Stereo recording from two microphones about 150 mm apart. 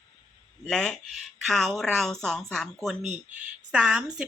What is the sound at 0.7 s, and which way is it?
A woman's voice, centre (ahead or behind).